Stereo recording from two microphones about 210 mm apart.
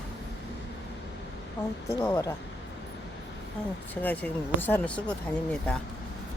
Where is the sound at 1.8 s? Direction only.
15° left (ahead or behind).